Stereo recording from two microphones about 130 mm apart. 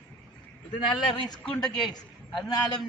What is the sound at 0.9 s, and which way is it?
Speech, 35° left (ahead or behind).